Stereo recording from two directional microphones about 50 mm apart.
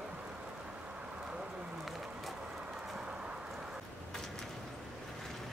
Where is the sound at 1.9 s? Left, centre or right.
Centre.